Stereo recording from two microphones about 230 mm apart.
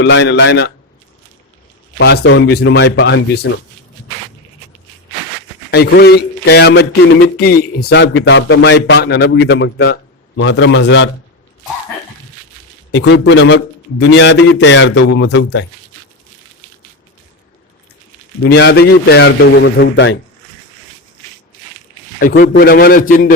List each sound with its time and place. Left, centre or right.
0.0 s speech: left
2.0 s speech: left
5.7 s speech: left
12.9 s speech: left
18.4 s speech: left
22.2 s a man's voice: left